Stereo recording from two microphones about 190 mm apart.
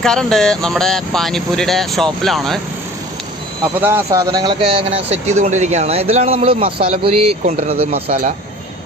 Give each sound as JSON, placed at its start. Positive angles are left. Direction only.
{"t": 0.0, "sound": "speech", "side_deg": 5}
{"t": 3.8, "sound": "speech", "side_deg": -10}